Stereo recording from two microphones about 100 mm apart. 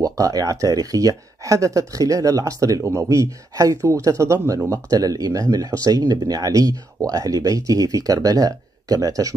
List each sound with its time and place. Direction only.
0.0 s speech: 35° right (ahead or behind)